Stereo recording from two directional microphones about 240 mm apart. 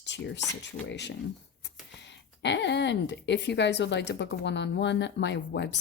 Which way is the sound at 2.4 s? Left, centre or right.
Left.